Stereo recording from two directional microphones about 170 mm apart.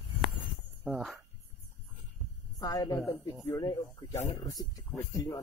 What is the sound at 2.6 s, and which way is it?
Speech, 20° left (ahead or behind).